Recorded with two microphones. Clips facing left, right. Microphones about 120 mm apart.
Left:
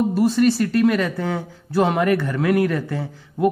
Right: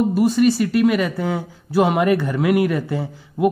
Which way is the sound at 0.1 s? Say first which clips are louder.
Right 1 dB; 5° right (ahead or behind).